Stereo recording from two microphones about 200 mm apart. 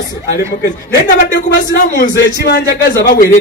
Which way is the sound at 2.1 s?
55° left (ahead or behind).